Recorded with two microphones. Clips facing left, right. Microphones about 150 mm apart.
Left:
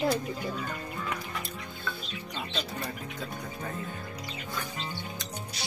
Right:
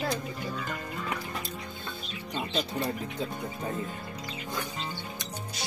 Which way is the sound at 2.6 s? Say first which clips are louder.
Right 6 dB; 30° right (ahead or behind).